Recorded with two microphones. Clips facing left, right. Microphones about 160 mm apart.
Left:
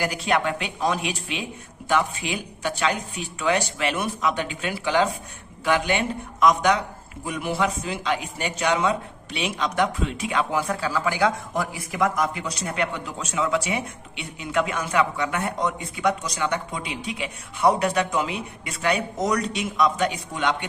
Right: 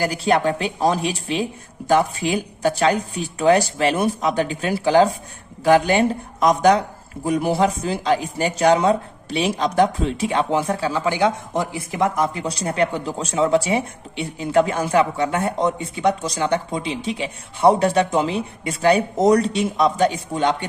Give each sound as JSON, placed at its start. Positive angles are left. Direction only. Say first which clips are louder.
{"t": 0.0, "sound": "a man's voice", "louder": "right 5 dB", "side_deg": -35}